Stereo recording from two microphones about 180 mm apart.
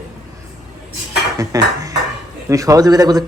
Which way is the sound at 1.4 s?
20° right (ahead or behind).